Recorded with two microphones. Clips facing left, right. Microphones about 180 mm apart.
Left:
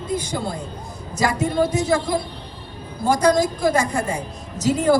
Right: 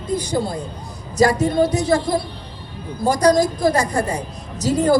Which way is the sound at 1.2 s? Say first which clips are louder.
Right 4 dB; 35° right (ahead or behind).